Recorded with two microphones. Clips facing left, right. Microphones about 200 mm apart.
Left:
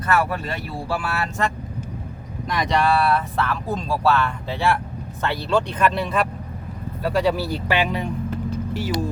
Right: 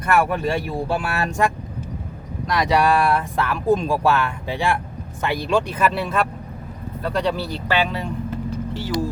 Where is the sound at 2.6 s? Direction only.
5° right (ahead or behind); by 8.1 s 15° left (ahead or behind).